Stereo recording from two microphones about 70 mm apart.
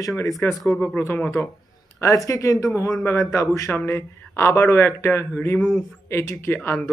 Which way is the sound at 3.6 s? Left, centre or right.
Left.